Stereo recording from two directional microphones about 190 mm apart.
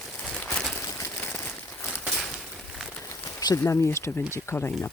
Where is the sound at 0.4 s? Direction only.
10° left (ahead or behind).